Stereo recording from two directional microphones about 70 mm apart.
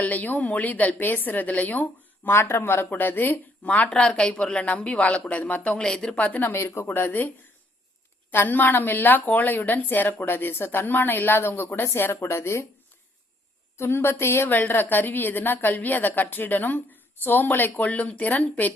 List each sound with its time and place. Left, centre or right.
0.0 s a woman's voice: left
2.3 s a woman's voice: left
3.6 s speech: centre
6.4 s a woman's voice: left
8.3 s a woman's voice: left
13.7 s a woman's voice: left